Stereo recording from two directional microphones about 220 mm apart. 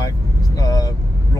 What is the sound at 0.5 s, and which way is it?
Speech, 15° left (ahead or behind).